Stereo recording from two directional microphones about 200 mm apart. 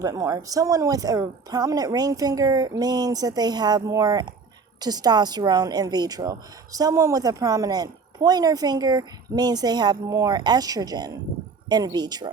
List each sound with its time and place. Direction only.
0.0 s a woman's voice: 15° right (ahead or behind)